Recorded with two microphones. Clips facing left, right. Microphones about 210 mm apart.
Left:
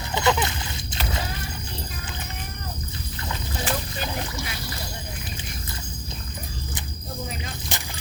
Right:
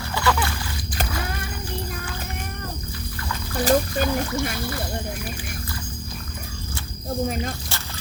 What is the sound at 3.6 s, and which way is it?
Splash, 45° right (ahead or behind).